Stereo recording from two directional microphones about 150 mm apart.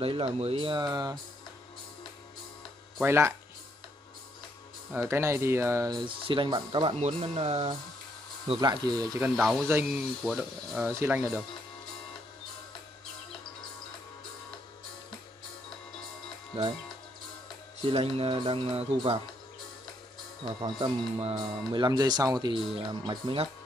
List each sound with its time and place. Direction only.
0.4 s speech: 40° right (ahead or behind)
3.0 s speech: 15° right (ahead or behind)
4.9 s speech: 15° right (ahead or behind)
5.9 s speech: 35° right (ahead or behind)
8.5 s speech: 25° right (ahead or behind)
9.4 s speech: centre (ahead or behind)
9.7 s speech: 15° right (ahead or behind)
10.9 s speech: 15° right (ahead or behind)
16.5 s speech: 40° right (ahead or behind)
17.8 s speech: 40° right (ahead or behind)
20.6 s speech: 40° right (ahead or behind)
21.8 s speech: 30° right (ahead or behind)